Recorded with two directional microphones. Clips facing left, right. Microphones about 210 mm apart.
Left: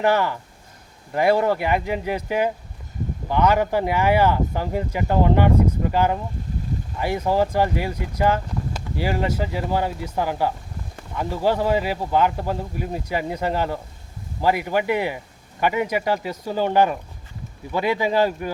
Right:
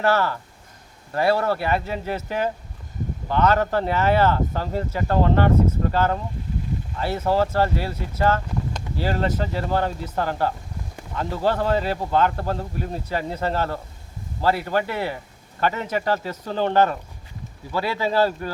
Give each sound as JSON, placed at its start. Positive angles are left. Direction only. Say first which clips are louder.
{"t": 0.0, "sound": "speech", "louder": "left 1 dB", "side_deg": 15}